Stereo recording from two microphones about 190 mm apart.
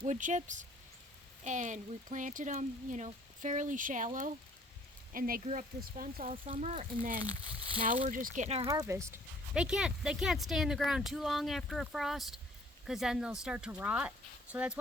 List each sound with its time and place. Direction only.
0.0 s speech: 40° right (ahead or behind)
6.3 s speech: 30° right (ahead or behind)
7.2 s speech: 20° left (ahead or behind)
7.9 s speech: 40° right (ahead or behind)
8.6 s speech: 15° right (ahead or behind)
9.6 s speech: 5° right (ahead or behind)